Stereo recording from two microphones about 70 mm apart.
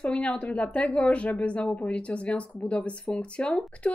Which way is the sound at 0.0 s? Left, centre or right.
Centre.